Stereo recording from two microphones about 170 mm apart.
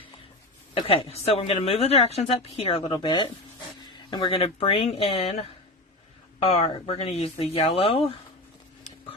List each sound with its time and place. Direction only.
0.7 s a woman's voice: 30° left (ahead or behind)